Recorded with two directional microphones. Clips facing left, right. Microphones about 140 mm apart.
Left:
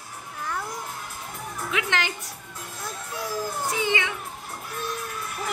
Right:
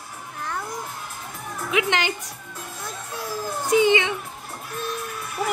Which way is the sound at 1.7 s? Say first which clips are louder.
Right 5 dB; 15° right (ahead or behind).